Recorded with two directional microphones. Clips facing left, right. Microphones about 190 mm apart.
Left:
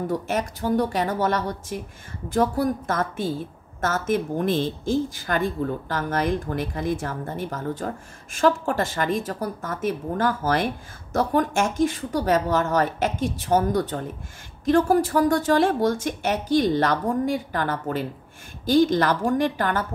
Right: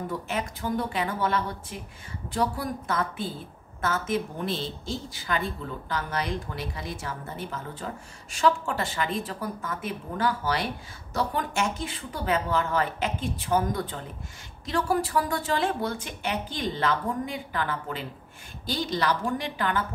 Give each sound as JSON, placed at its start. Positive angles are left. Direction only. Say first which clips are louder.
{"t": 0.1, "sound": "a woman's voice", "louder": "left 6 dB", "side_deg": 40}